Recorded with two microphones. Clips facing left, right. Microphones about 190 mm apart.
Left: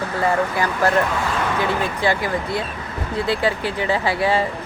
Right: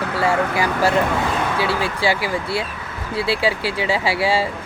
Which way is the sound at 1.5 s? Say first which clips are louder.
Even; 10° right (ahead or behind).